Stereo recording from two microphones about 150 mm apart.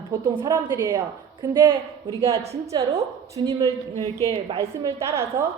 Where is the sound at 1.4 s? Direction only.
30° right (ahead or behind).